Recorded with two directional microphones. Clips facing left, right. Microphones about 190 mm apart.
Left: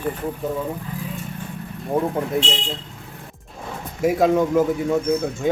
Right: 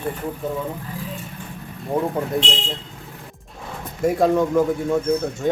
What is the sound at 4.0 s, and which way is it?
Speech, 5° left (ahead or behind).